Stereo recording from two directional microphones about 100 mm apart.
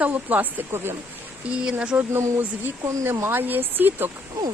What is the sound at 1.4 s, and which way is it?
Speech, 10° right (ahead or behind).